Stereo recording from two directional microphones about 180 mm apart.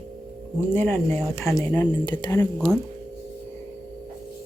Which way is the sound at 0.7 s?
10° left (ahead or behind).